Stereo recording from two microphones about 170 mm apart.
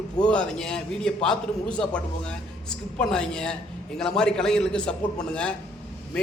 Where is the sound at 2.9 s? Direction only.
5° left (ahead or behind).